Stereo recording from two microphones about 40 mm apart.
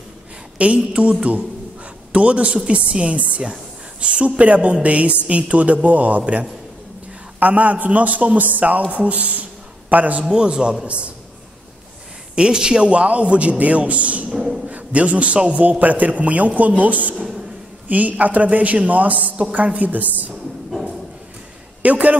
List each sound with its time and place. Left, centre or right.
0.6 s a man's voice: right
2.1 s a man's voice: right
10.2 s a man's voice: centre
12.4 s a man's voice: right
14.3 s a man's voice: centre
14.7 s a man's voice: right
15.8 s a man's voice: right
17.1 s a woman's voice: centre
17.8 s a man's voice: right
21.8 s a man's voice: right